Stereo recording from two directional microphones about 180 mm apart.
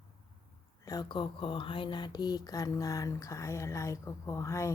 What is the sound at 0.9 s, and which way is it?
Speech, 25° left (ahead or behind).